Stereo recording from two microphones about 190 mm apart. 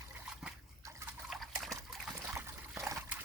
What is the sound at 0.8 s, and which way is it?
Liquid, 15° right (ahead or behind).